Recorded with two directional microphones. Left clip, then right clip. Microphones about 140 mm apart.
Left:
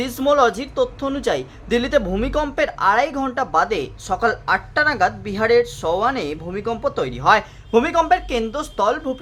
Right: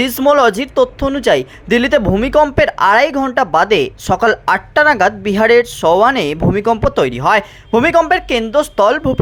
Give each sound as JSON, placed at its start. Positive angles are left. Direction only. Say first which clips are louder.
{"t": 0.0, "sound": "speech", "louder": "right 6 dB", "side_deg": -40}